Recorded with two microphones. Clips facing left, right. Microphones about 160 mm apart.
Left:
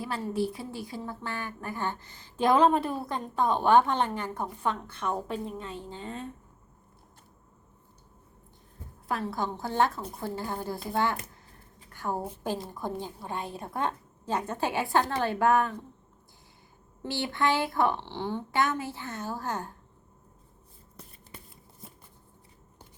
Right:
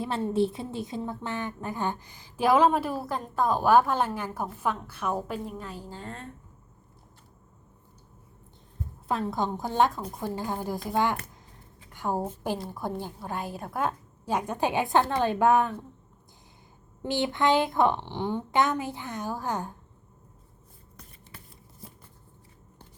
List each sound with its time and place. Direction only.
0.0 s a woman's voice: 25° right (ahead or behind); by 6.3 s centre (ahead or behind)
9.0 s a woman's voice: 20° right (ahead or behind)
11.5 s a sound: 15° right (ahead or behind)
12.4 s a woman's voice: 10° right (ahead or behind)
17.0 s a woman's voice: 20° right (ahead or behind)